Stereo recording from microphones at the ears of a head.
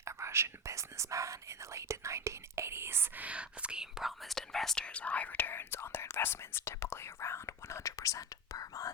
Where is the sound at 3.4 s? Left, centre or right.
Centre.